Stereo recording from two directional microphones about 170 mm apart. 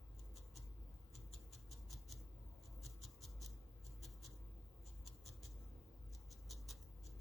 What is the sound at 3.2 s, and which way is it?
Writing, centre (ahead or behind).